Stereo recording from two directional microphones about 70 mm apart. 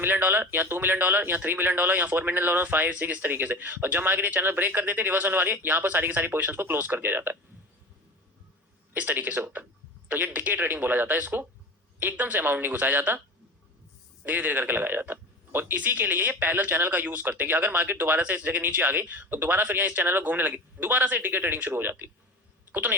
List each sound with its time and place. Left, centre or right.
0.0 s speech: right
8.9 s speech: right
14.3 s speech: right